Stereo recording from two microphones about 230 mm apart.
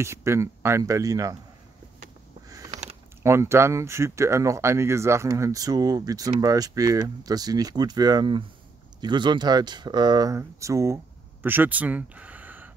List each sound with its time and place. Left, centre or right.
0.0 s speech: centre
2.7 s typing: right
3.2 s speech: centre